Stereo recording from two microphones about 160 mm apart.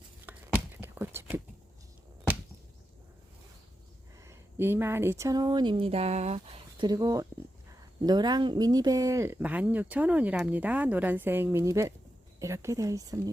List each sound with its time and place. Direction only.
0.3 s a sound: 10° right (ahead or behind)
4.2 s speech: 15° right (ahead or behind); by 6.8 s 40° right (ahead or behind)
6.8 s speech: 25° right (ahead or behind)